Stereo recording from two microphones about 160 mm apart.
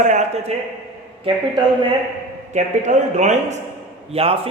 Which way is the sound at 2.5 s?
45° right (ahead or behind).